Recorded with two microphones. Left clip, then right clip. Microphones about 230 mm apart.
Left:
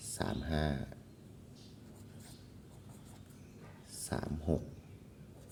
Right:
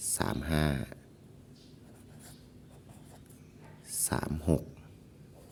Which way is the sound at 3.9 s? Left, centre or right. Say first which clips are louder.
Right 6 dB; right.